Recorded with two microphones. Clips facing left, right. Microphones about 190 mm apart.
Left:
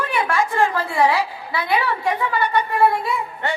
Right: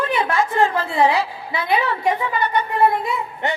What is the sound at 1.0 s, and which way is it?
A woman's voice, 20° right (ahead or behind).